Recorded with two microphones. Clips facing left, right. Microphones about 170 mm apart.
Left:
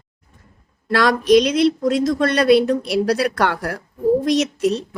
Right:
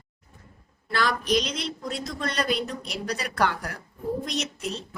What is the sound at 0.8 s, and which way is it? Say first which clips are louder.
Speech: left 10 dB; 75° left (ahead or behind).